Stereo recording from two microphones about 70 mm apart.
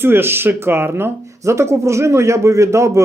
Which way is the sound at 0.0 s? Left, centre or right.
Right.